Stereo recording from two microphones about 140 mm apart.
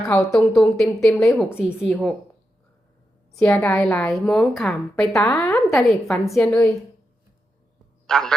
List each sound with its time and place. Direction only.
0.1 s a woman's voice: 5° left (ahead or behind)
3.4 s a woman's voice: 10° left (ahead or behind)
8.0 s a man's voice: 5° left (ahead or behind)